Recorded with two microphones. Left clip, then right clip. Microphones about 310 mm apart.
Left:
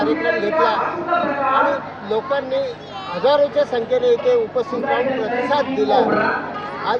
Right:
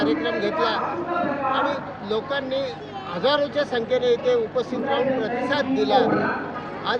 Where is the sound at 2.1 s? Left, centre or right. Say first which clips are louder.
Left 5 dB; centre.